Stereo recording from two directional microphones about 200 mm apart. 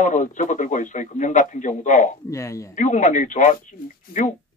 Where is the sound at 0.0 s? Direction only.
40° left (ahead or behind).